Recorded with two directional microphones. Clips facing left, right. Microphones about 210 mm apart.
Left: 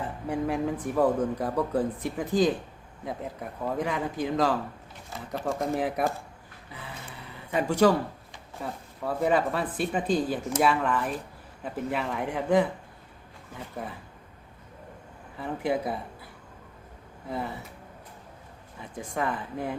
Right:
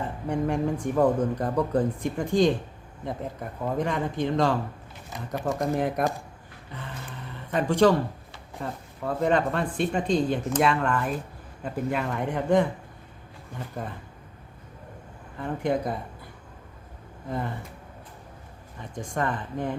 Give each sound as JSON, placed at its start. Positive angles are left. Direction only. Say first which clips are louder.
{"t": 0.3, "sound": "speech", "louder": "right 2 dB", "side_deg": 5}
{"t": 5.1, "sound": "speech", "louder": "right 2 dB", "side_deg": -15}
{"t": 5.5, "sound": "speech", "louder": "right 2 dB", "side_deg": 5}
{"t": 15.4, "sound": "speech", "louder": "right 2 dB", "side_deg": 5}
{"t": 17.2, "sound": "speech", "louder": "right 2 dB", "side_deg": 5}
{"t": 18.8, "sound": "speech", "louder": "right 2 dB", "side_deg": 5}